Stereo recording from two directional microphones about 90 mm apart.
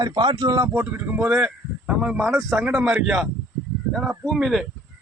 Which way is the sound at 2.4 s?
Centre (ahead or behind).